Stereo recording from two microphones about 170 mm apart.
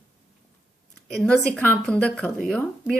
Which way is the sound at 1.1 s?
5° left (ahead or behind).